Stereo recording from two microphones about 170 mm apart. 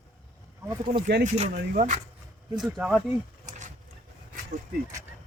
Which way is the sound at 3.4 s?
45° right (ahead or behind).